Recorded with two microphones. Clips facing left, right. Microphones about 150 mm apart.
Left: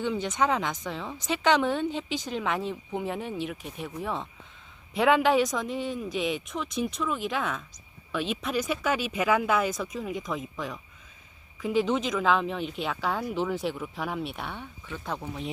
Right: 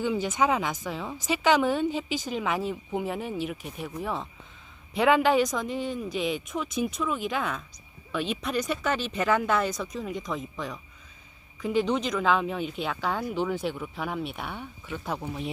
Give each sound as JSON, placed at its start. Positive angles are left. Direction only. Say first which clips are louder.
{"t": 0.0, "sound": "speech", "louder": "right 1 dB", "side_deg": -5}